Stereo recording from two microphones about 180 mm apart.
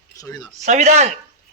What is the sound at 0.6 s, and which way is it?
Speech, 40° right (ahead or behind).